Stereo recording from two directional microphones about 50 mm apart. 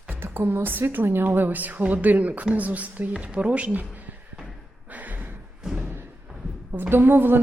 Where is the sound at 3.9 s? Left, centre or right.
Right.